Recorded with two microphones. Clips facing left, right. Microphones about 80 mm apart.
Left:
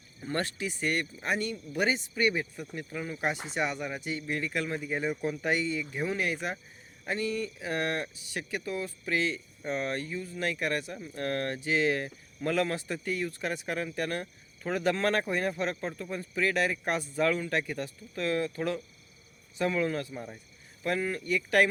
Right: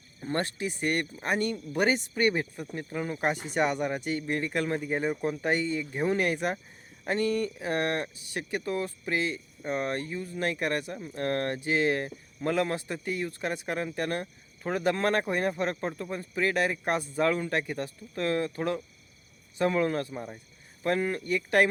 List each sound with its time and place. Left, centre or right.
0.2 s speech: right
6.1 s speech: right
9.1 s speech: centre; by 20.1 s right
20.1 s speech: centre
20.8 s speech: right